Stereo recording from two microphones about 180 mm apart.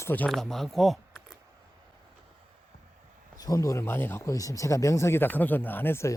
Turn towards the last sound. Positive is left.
turn(degrees=15)  # may be behind; listen again after turning